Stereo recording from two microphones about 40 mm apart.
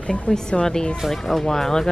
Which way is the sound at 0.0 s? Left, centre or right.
Left.